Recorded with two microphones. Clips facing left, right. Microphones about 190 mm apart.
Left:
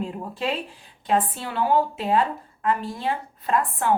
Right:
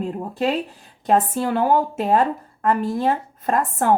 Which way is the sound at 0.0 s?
45° right (ahead or behind).